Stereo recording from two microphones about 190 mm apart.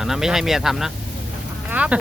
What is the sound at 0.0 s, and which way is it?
Speech, 5° right (ahead or behind).